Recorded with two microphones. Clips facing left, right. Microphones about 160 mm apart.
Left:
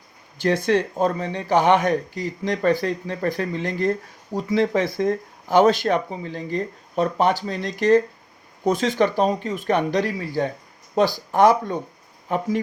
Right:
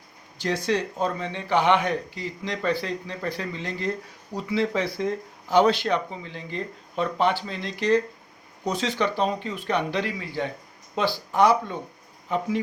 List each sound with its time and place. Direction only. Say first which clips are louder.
0.3 s speech: left 5 dB; 55° left (ahead or behind)